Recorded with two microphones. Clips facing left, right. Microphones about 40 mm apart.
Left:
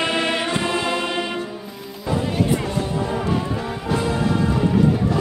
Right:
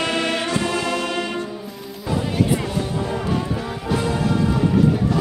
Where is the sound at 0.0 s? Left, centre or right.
Centre.